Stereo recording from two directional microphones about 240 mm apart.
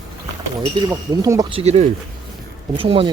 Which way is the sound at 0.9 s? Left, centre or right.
Centre.